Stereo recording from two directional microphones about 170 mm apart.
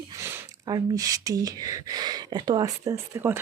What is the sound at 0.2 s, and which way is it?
Speech, 20° right (ahead or behind).